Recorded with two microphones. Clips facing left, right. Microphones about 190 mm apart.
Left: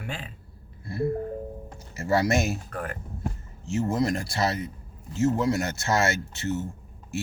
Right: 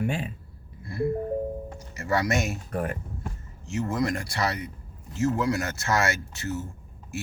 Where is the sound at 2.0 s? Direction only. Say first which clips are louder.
Left 2 dB; 30° left (ahead or behind).